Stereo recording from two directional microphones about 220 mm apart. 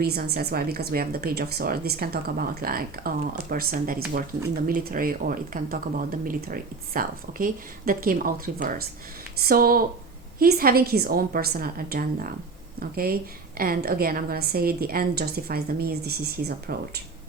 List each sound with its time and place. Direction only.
0.0 s a woman's voice: 45° right (ahead or behind)